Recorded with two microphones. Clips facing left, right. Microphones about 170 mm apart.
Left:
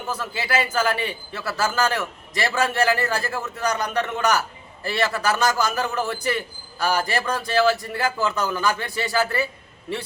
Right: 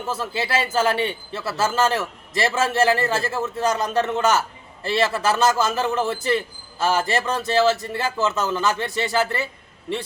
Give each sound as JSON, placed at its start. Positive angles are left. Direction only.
{"t": 0.1, "sound": "a man's voice", "side_deg": -30}